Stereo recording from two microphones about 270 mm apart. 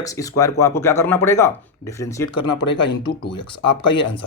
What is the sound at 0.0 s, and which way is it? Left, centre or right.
Speech, centre.